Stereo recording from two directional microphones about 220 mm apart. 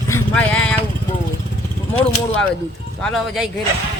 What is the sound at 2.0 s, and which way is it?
Speech, 5° left (ahead or behind).